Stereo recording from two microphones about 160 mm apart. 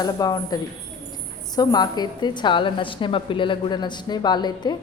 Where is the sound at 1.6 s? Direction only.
25° left (ahead or behind).